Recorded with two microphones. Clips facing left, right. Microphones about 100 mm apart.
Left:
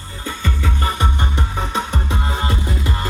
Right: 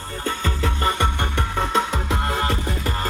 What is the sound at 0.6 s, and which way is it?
Music, 60° right (ahead or behind).